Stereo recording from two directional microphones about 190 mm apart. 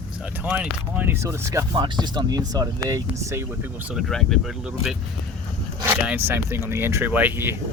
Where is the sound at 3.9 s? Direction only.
Centre (ahead or behind).